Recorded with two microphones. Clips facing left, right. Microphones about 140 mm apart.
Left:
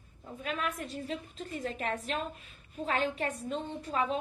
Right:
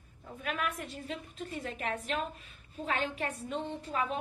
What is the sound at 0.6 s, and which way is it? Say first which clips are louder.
A woman's voice: left 1 dB; 35° left (ahead or behind).